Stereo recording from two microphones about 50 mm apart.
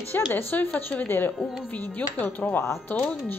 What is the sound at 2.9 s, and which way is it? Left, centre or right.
Speech, left.